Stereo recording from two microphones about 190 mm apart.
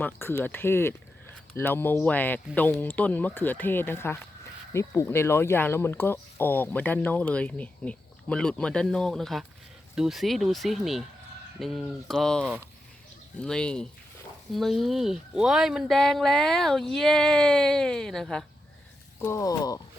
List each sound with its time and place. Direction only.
0.0 s speech: 10° left (ahead or behind)
19.2 s speech: 15° left (ahead or behind)